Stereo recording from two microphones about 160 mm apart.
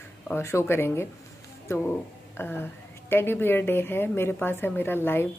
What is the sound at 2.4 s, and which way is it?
A woman's voice, 15° left (ahead or behind).